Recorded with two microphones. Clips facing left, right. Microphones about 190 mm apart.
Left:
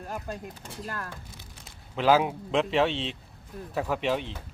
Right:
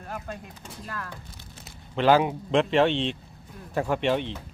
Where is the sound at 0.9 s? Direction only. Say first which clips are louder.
Even; 35° left (ahead or behind).